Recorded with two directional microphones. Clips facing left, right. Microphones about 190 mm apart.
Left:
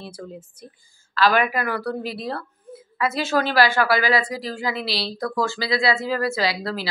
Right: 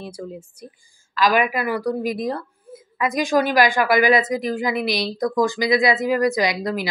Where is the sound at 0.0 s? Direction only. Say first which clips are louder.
Right 3 dB; 10° right (ahead or behind).